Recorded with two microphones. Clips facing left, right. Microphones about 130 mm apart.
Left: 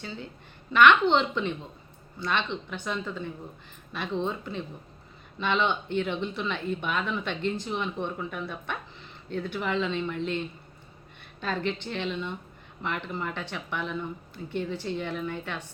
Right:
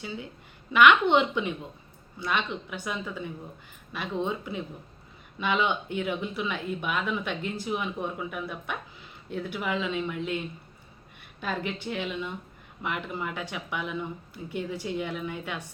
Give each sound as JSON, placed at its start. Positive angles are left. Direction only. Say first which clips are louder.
{"t": 0.0, "sound": "speech", "louder": "right 1 dB", "side_deg": -10}